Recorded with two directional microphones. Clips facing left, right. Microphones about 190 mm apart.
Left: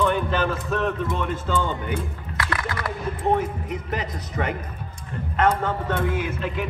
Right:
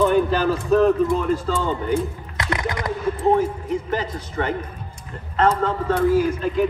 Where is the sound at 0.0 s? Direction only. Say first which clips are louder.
Right 5 dB; 40° right (ahead or behind).